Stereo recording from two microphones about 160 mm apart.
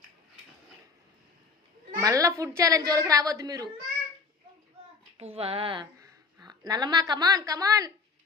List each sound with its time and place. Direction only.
2.0 s a woman's voice: 20° right (ahead or behind)
5.1 s speech: 35° right (ahead or behind)